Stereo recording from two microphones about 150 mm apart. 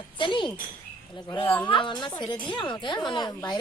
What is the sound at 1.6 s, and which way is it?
A woman's voice, 30° left (ahead or behind).